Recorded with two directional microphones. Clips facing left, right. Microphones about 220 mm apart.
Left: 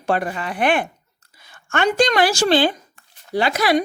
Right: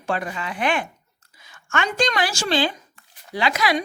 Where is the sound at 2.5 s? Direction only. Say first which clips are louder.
Left 5 dB; 50° left (ahead or behind).